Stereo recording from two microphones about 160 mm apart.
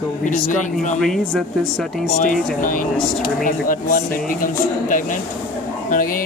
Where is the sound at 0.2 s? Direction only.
50° left (ahead or behind).